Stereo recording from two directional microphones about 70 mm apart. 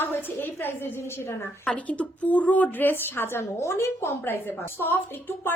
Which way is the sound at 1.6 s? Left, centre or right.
Centre.